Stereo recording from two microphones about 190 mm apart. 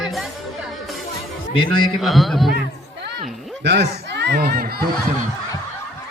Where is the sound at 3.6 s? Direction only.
60° right (ahead or behind).